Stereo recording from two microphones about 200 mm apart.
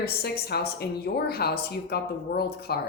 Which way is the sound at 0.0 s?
50° left (ahead or behind).